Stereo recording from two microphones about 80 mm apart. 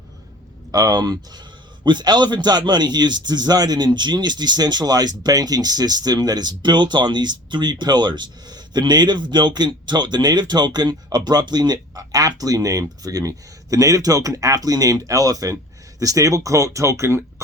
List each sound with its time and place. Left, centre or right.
0.7 s a man's voice: right